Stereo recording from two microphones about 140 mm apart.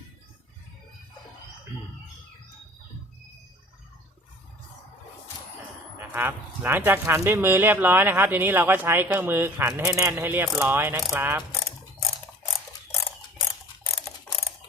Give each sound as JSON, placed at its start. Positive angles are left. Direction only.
{"t": 6.0, "sound": "speech", "side_deg": -15}